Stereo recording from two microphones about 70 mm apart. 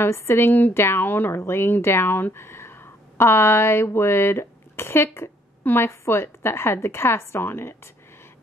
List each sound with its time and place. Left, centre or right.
0.0 s speech: left